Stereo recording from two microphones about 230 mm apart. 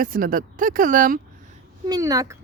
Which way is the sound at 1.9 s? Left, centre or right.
Centre.